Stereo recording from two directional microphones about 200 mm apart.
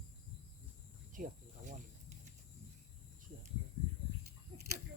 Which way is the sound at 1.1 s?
40° right (ahead or behind).